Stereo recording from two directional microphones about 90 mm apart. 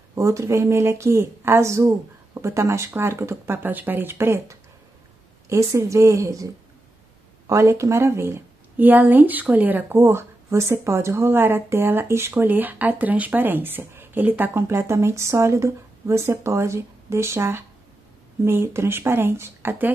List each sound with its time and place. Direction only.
0.1 s speech: 35° right (ahead or behind)